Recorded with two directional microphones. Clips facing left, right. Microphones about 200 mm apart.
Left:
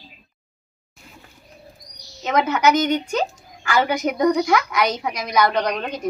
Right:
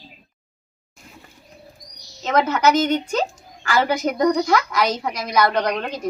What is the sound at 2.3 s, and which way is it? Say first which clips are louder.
A woman's voice: even; centre (ahead or behind).